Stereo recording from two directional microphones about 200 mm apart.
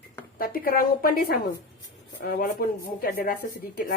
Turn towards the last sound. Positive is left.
turn(degrees=45)  # may be behind; listen again after turning